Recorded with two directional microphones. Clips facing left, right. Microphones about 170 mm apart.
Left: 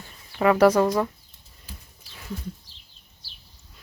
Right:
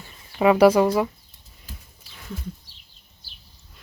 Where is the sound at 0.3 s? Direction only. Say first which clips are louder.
Right 2 dB; 15° right (ahead or behind).